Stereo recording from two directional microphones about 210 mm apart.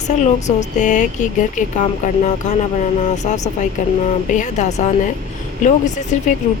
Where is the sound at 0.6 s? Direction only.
35° left (ahead or behind).